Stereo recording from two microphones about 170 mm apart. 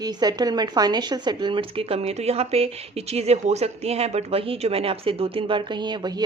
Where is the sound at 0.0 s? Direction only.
25° right (ahead or behind).